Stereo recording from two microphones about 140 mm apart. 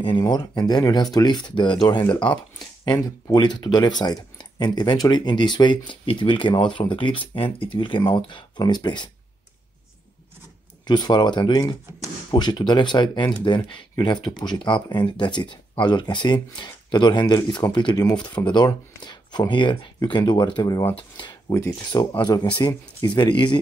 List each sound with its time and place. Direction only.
0.2 s speech: 30° left (ahead or behind)
10.9 s speech: 30° left (ahead or behind)
21.5 s speech: 20° left (ahead or behind)